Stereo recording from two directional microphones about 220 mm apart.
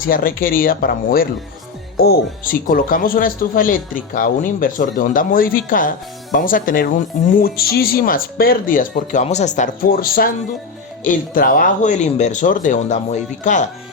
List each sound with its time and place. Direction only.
0.0 s speech: 40° left (ahead or behind)